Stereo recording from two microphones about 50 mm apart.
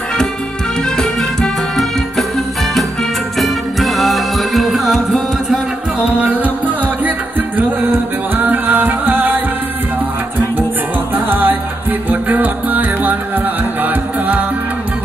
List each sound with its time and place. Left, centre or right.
0.9 s music: centre
5.9 s music: right
7.1 s music: right
11.1 s music: right